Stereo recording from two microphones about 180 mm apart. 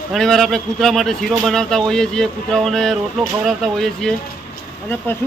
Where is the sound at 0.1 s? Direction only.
Centre (ahead or behind).